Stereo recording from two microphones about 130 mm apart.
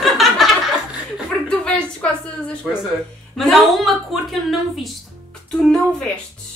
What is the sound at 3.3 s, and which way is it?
A woman's voice, centre (ahead or behind).